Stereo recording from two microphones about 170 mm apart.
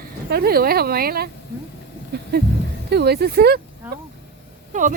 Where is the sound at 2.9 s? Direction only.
75° right (ahead or behind).